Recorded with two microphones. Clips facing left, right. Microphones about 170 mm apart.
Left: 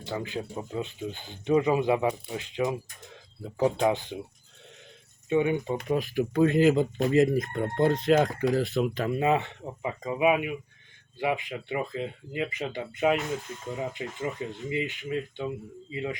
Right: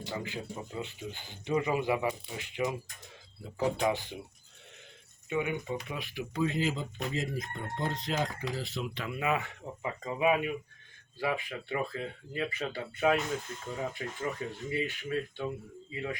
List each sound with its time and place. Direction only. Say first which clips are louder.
0.0 s speech: left 5 dB; 20° left (ahead or behind)
5.3 s speech: left 8 dB; 25° left (ahead or behind)
5.9 s speech: left 12 dB; 40° left (ahead or behind)
6.4 s speech: left 10 dB; 65° left (ahead or behind)
9.0 s speech: left 5 dB; 35° left (ahead or behind)
9.4 s speech: left 4 dB; 20° left (ahead or behind)